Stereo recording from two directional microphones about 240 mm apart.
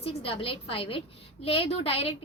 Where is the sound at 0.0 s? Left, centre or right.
Left.